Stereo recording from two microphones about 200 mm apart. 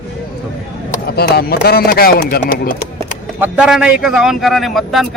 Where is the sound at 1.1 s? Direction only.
50° left (ahead or behind).